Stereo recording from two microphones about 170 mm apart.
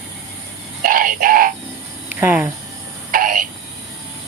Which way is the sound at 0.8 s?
55° right (ahead or behind).